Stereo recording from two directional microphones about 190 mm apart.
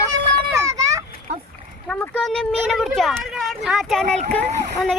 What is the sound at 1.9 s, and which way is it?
A child's voice, 5° left (ahead or behind).